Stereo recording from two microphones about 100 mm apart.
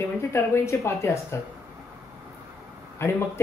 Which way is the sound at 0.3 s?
25° left (ahead or behind).